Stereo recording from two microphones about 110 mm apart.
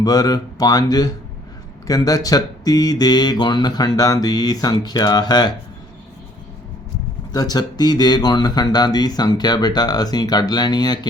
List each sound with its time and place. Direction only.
0.0 s speech: 35° left (ahead or behind)
7.3 s speech: 35° left (ahead or behind)